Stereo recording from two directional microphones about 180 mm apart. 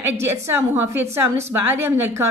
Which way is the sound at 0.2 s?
15° right (ahead or behind).